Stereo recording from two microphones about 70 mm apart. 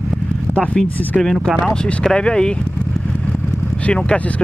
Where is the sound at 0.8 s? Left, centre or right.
Centre.